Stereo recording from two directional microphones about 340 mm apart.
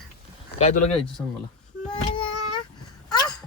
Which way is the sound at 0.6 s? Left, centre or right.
Centre.